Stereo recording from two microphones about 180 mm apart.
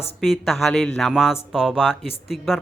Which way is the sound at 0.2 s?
Centre (ahead or behind).